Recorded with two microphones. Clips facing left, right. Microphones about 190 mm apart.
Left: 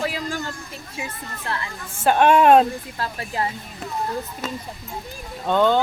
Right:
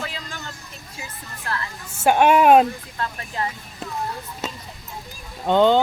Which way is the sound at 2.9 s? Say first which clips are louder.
Left 2 dB; 30° left (ahead or behind).